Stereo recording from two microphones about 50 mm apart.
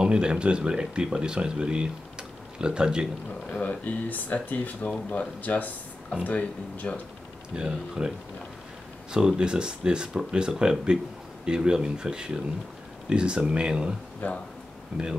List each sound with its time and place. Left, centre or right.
0.0 s speech: centre
3.4 s speech: left
7.5 s speech: centre
9.1 s speech: centre
14.2 s speech: left